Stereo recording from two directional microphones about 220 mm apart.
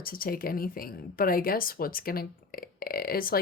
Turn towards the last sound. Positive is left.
turn(degrees=40)  # may be behind; listen again after turning